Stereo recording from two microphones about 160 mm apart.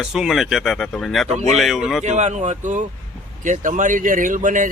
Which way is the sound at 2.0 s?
45° right (ahead or behind).